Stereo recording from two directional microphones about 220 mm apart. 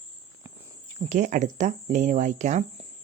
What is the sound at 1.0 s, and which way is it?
Speech, 35° right (ahead or behind).